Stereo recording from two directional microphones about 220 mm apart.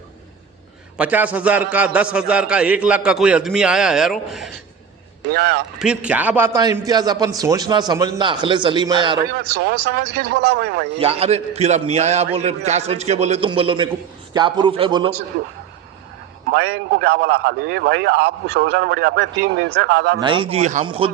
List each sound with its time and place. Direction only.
0.9 s a man's voice: 5° right (ahead or behind)
5.3 s a man's voice: 45° right (ahead or behind)
5.8 s a man's voice: 5° right (ahead or behind); by 9.2 s 20° right (ahead or behind)
9.6 s a man's voice: 45° right (ahead or behind)
10.9 s a man's voice: 25° right (ahead or behind)
16.5 s a man's voice: 50° right (ahead or behind)
20.1 s a man's voice: 20° right (ahead or behind)